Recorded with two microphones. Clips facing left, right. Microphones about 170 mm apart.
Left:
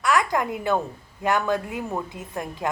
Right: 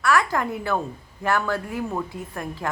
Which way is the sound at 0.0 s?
20° left (ahead or behind).